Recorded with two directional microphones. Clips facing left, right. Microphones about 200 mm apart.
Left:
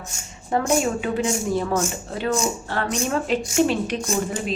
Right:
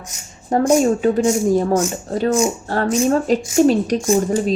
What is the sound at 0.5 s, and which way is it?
A woman's voice, 40° right (ahead or behind).